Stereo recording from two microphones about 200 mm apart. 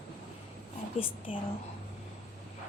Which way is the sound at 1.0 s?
25° left (ahead or behind).